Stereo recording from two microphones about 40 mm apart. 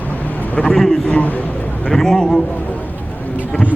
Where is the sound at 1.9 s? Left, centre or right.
Centre.